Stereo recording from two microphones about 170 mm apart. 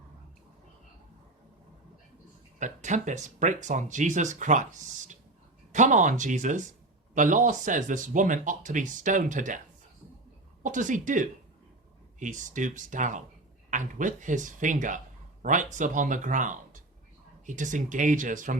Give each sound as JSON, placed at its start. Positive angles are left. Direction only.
{"t": 2.6, "sound": "speech", "side_deg": -45}
{"t": 10.6, "sound": "speech", "side_deg": -50}